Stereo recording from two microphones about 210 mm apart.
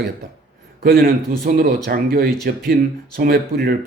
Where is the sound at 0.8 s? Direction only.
45° right (ahead or behind).